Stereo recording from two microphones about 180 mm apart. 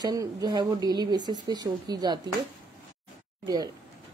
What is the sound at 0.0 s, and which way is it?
A woman's voice, 20° right (ahead or behind).